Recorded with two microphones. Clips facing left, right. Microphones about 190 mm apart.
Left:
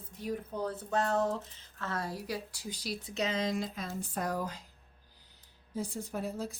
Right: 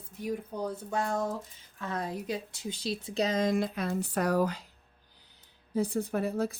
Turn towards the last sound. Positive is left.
turn(degrees=-60)  # may be behind; listen again after turning